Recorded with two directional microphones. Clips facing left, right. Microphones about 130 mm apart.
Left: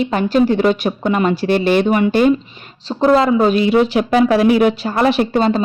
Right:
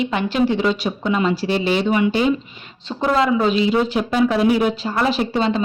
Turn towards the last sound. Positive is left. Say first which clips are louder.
# left 4 dB
turn(degrees=45)  # may be behind; listen again after turning